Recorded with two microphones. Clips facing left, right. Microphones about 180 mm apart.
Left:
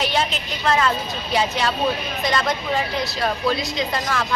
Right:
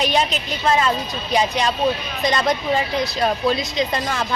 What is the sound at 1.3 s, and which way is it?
A woman's voice, 15° right (ahead or behind).